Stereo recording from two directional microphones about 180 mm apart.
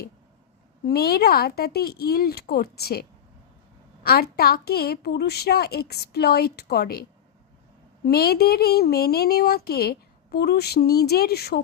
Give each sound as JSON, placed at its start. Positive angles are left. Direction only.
{"t": 0.9, "sound": "a woman's voice", "side_deg": 60}
{"t": 8.0, "sound": "a woman's voice", "side_deg": 60}